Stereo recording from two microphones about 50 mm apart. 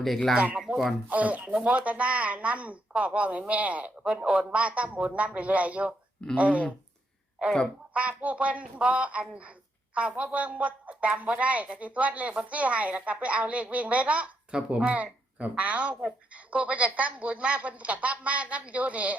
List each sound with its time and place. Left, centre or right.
0.0 s speech: centre
0.7 s a sound: right
1.1 s speech: right
7.9 s speech: right